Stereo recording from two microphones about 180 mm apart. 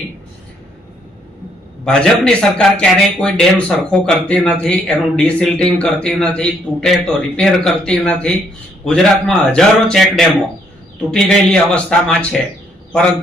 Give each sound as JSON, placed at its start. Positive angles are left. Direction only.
{"t": 1.8, "sound": "a man's voice", "side_deg": 5}